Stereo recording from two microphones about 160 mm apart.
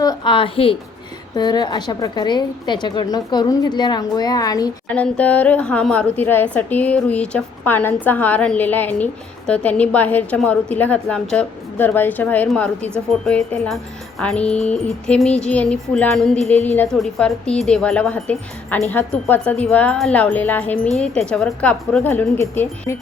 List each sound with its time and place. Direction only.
0.0 s a woman's voice: 30° left (ahead or behind)
4.9 s a woman's voice: 10° left (ahead or behind)